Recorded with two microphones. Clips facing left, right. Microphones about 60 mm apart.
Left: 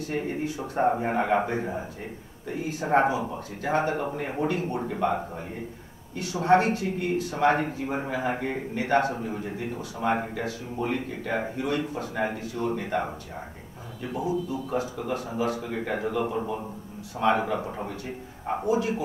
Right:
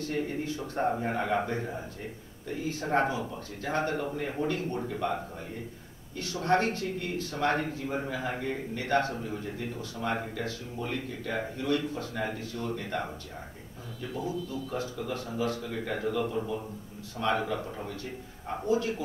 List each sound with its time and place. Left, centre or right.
0.0 s a man's voice: centre
15.4 s a man's voice: centre
15.7 s a man's voice: centre